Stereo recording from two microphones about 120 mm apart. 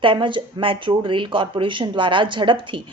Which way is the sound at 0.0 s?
45° right (ahead or behind).